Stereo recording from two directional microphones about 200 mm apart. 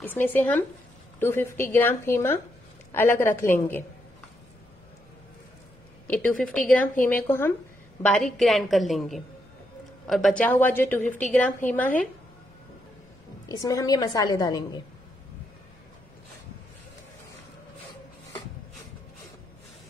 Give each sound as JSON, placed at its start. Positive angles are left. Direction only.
{"t": 0.0, "sound": "speech", "side_deg": 10}
{"t": 6.0, "sound": "speech", "side_deg": 5}
{"t": 8.4, "sound": "a woman's voice", "side_deg": 0}
{"t": 13.5, "sound": "a woman's voice", "side_deg": 20}